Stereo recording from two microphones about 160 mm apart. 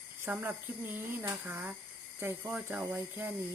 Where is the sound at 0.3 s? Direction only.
10° right (ahead or behind).